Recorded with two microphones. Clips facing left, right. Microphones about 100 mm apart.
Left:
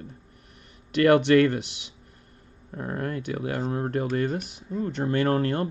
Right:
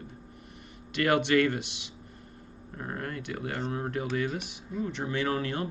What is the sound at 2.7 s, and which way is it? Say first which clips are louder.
Speech: left 6 dB; 45° left (ahead or behind).